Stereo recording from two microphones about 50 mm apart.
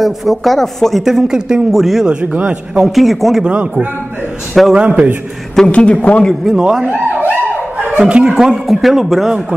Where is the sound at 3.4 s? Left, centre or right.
Right.